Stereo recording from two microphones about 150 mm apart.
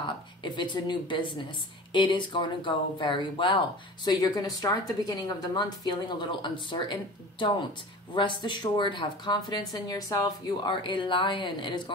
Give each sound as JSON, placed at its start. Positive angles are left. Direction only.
{"t": 0.4, "sound": "a woman's voice", "side_deg": 30}